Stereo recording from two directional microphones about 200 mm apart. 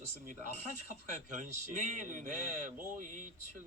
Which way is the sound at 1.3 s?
40° right (ahead or behind).